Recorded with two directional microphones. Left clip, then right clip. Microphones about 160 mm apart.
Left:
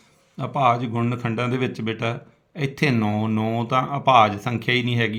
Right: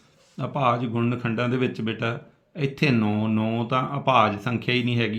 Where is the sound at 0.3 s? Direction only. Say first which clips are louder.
Left 3 dB; 35° left (ahead or behind).